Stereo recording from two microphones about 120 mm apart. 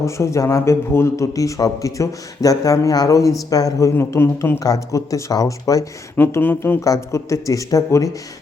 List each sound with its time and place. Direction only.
0.0 s a man's voice: 25° left (ahead or behind)
6.1 s speech: 15° left (ahead or behind)
6.8 s a man's voice: 25° left (ahead or behind)